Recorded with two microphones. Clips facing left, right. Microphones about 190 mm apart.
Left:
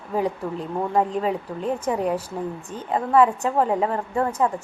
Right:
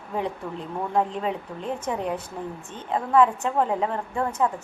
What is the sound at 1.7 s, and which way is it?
Speech, 10° left (ahead or behind).